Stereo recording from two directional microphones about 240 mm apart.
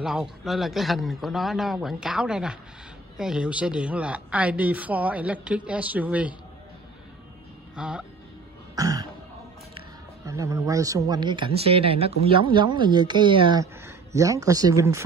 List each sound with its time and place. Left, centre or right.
0.0 s a woman's voice: centre
7.7 s speech: centre
8.7 s cough: centre
10.2 s speech: centre